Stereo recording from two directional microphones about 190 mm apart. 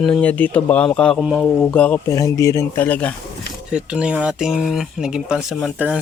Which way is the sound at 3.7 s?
5° right (ahead or behind).